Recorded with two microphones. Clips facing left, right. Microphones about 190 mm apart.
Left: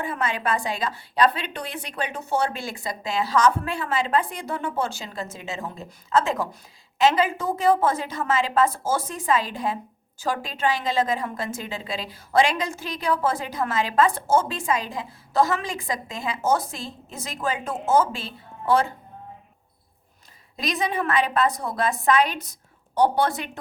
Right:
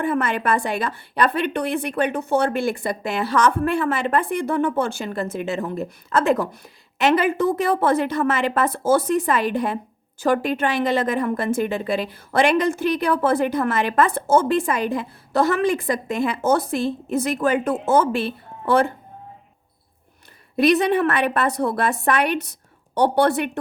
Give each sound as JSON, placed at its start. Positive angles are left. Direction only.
{"t": 0.0, "sound": "a woman's voice", "side_deg": -60}
{"t": 20.6, "sound": "a woman's voice", "side_deg": -65}